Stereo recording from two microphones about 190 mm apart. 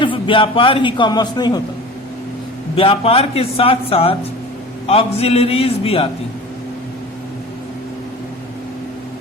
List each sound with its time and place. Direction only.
0.0 s a man's voice: 25° left (ahead or behind)
2.7 s a man's voice: 30° left (ahead or behind)